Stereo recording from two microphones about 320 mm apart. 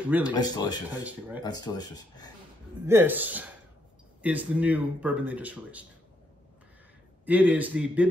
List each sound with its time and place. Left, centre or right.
0.2 s speech: centre
2.9 s speech: centre
7.2 s speech: centre